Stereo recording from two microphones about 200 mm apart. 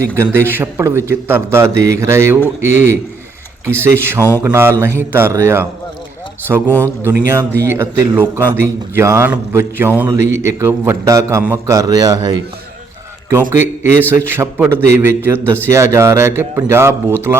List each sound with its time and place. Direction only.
0.0 s a man's voice: 10° right (ahead or behind)
13.5 s a man's voice: 10° right (ahead or behind)